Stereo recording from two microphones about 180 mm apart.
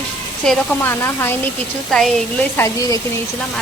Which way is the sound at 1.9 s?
Centre (ahead or behind).